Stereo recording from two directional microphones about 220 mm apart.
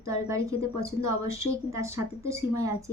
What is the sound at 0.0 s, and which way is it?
A woman's voice, 15° right (ahead or behind).